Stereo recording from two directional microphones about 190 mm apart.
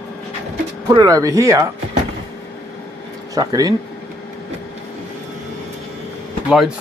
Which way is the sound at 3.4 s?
20° right (ahead or behind).